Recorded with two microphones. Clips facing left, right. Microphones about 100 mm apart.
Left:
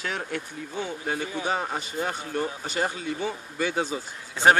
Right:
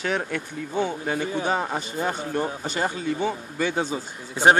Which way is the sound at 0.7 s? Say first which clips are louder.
Right 5 dB; 35° right (ahead or behind).